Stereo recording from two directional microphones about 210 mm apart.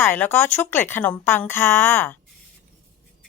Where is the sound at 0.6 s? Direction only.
10° left (ahead or behind).